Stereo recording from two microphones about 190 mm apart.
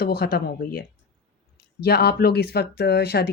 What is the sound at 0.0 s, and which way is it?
A woman's voice, 55° left (ahead or behind).